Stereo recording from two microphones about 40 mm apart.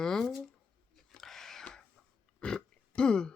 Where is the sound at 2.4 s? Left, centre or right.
Left.